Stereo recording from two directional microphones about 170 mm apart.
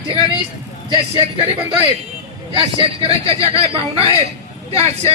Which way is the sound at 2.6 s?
30° right (ahead or behind).